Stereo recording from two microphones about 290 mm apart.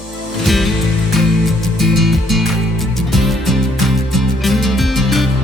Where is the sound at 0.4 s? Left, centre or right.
Centre.